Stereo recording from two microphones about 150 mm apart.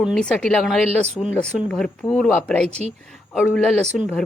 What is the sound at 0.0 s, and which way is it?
Speech, 5° left (ahead or behind).